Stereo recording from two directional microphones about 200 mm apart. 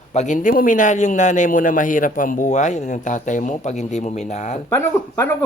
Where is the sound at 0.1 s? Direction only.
35° left (ahead or behind).